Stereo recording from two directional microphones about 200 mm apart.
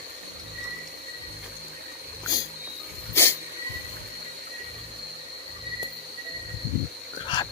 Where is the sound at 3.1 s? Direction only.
10° left (ahead or behind).